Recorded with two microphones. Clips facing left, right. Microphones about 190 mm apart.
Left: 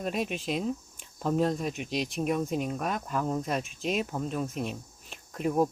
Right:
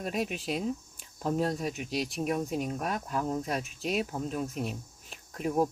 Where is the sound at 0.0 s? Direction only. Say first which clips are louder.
Left 1 dB; 10° right (ahead or behind).